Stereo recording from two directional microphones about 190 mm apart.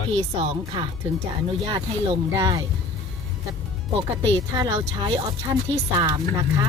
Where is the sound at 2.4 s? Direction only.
20° right (ahead or behind).